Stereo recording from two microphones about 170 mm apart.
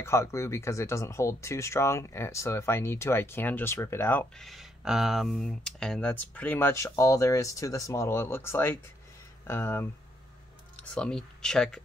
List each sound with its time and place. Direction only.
0.0 s speech: 15° left (ahead or behind)
4.5 s speech: centre (ahead or behind); by 9.8 s 15° left (ahead or behind)
11.0 s speech: 5° left (ahead or behind)